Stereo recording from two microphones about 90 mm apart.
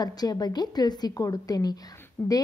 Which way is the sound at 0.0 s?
45° left (ahead or behind).